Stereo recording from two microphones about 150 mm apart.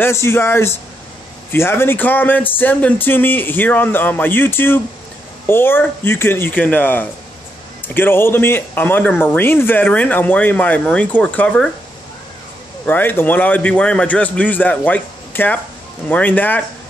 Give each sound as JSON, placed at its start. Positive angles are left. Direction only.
{"t": 0.0, "sound": "speech", "side_deg": 15}
{"t": 12.8, "sound": "speech", "side_deg": 15}